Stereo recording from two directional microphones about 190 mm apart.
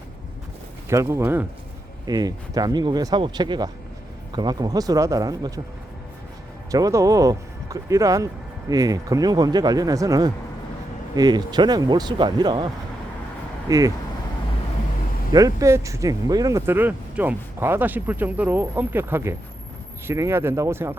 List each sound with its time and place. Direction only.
0.9 s speech: 15° right (ahead or behind)
6.7 s speech: 20° right (ahead or behind)
13.7 s speech: 20° right (ahead or behind)
15.3 s speech: 20° right (ahead or behind)